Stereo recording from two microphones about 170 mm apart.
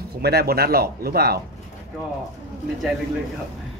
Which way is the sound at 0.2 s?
70° right (ahead or behind).